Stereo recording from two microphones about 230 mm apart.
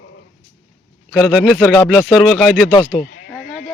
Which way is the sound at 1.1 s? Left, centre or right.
Centre.